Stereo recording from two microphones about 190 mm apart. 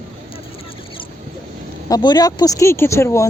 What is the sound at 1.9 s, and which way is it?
Speech, 20° left (ahead or behind).